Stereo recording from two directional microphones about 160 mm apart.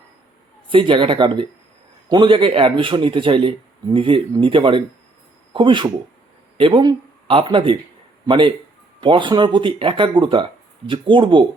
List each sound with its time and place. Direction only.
0.7 s a man's voice: 30° right (ahead or behind)